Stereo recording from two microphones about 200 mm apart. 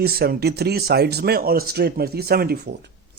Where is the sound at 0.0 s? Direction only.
50° right (ahead or behind).